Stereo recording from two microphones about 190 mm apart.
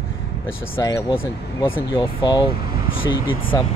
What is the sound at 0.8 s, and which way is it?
Speech, 15° left (ahead or behind).